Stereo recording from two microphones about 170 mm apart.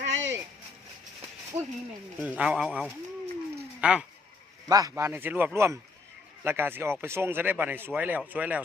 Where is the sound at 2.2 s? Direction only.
5° right (ahead or behind).